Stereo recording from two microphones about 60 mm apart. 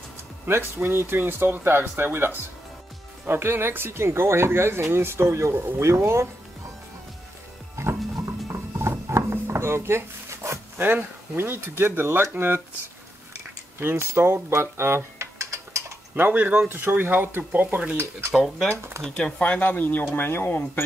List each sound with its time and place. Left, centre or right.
0.5 s speech: right
7.8 s music: right
8.5 s a sound: right
11.3 s speech: right
13.7 s speech: right
16.2 s speech: right
18.3 s speech: centre
19.0 s speech: centre; by 20.8 s left